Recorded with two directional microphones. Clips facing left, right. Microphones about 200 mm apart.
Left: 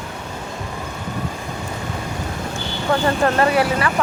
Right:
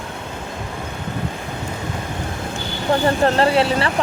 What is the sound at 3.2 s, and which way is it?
Speech, 30° right (ahead or behind).